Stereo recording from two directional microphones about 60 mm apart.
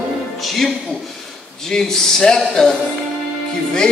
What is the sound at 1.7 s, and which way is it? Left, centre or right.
Speech, centre.